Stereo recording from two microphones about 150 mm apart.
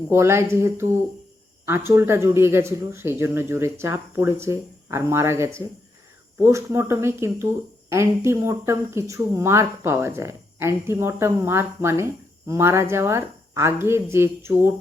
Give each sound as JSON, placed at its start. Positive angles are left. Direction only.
{"t": 0.1, "sound": "speech", "side_deg": -15}